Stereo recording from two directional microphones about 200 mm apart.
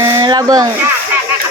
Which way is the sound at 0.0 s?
20° right (ahead or behind).